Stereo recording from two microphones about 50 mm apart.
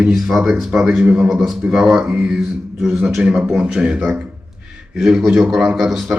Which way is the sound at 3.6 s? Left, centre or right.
Right.